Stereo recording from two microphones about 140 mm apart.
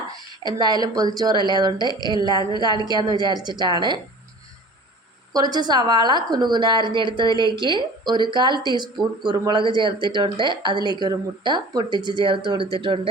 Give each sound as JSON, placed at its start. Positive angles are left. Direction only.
{"t": 0.4, "sound": "a woman's voice", "side_deg": -30}
{"t": 5.3, "sound": "speech", "side_deg": -30}